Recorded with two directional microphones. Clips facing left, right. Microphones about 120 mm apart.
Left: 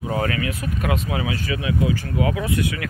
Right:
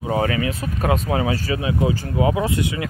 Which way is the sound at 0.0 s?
25° right (ahead or behind).